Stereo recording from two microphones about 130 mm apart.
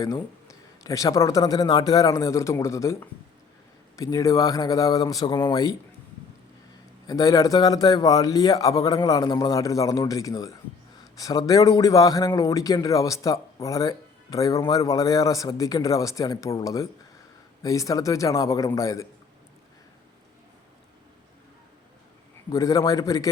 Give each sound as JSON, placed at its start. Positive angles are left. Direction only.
{"t": 0.0, "sound": "speech", "side_deg": 25}
{"t": 7.1, "sound": "speech", "side_deg": 25}
{"t": 22.5, "sound": "speech", "side_deg": 25}